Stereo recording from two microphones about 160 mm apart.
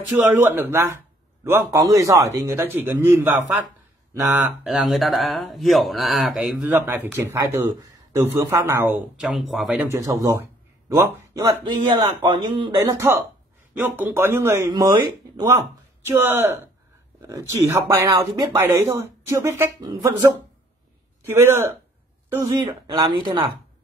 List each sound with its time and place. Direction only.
0.2 s speech: 10° right (ahead or behind)
4.3 s speech: 10° right (ahead or behind)
9.8 s speech: 20° right (ahead or behind)
11.6 s speech: 30° right (ahead or behind)
12.9 s speech: 15° right (ahead or behind)
21.4 s speech: 15° right (ahead or behind)
22.4 s speech: 25° right (ahead or behind)